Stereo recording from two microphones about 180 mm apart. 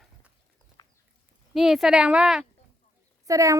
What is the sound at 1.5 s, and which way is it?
Speech, centre (ahead or behind).